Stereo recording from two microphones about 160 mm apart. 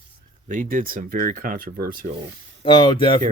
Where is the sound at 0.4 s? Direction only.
55° right (ahead or behind).